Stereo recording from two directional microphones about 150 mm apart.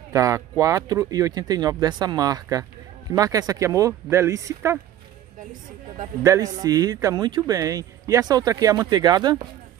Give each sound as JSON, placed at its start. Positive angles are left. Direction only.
{"t": 0.1, "sound": "speech", "side_deg": -20}
{"t": 6.2, "sound": "speech", "side_deg": -20}